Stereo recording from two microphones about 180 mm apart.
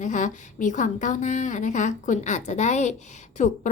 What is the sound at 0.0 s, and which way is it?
A woman's voice, 45° left (ahead or behind).